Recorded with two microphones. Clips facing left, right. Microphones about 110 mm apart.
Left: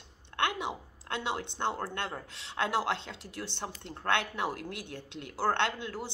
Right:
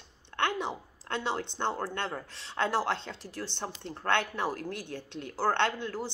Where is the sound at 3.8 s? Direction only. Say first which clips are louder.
Right 2 dB; 15° left (ahead or behind).